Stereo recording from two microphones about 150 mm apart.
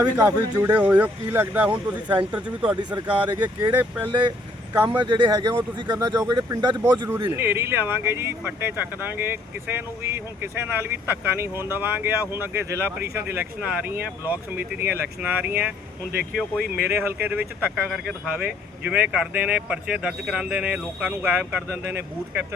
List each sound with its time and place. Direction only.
0.2 s speech: 15° right (ahead or behind)
2.9 s speech: 30° right (ahead or behind)
4.7 s speech: 10° right (ahead or behind)
5.0 s speech: 30° right (ahead or behind)
7.3 s speech: 15° right (ahead or behind)
16.3 s speech: centre (ahead or behind)
16.7 s speech: 15° right (ahead or behind)